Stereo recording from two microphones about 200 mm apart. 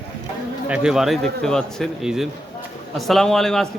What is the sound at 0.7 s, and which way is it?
Speech, 5° right (ahead or behind).